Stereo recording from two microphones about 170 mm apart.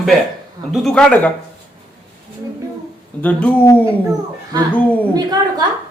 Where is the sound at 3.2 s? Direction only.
10° left (ahead or behind).